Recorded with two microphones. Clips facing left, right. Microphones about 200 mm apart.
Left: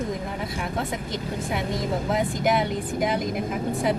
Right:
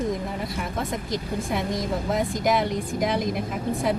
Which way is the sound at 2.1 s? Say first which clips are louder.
Even; centre (ahead or behind).